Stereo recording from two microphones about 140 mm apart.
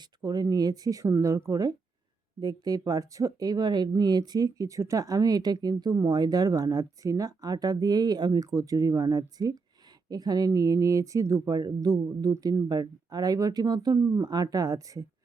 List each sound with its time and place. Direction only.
0.2 s speech: 30° right (ahead or behind)